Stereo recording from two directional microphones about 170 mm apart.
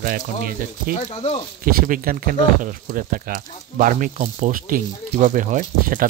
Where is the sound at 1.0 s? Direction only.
35° left (ahead or behind).